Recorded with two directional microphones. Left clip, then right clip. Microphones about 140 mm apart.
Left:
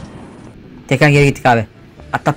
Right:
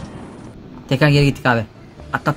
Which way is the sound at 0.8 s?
20° left (ahead or behind).